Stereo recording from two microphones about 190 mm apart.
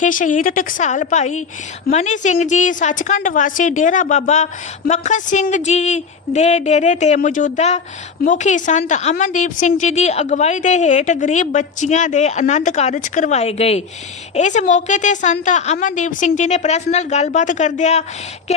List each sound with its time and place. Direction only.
0.0 s a woman's voice: 45° left (ahead or behind)